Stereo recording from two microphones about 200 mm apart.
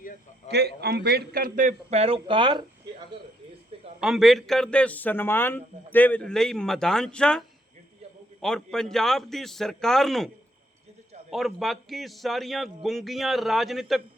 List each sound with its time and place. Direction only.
0.4 s a man's voice: 55° right (ahead or behind); by 2.6 s 25° right (ahead or behind)
4.0 s a man's voice: centre (ahead or behind)
11.3 s a man's voice: centre (ahead or behind)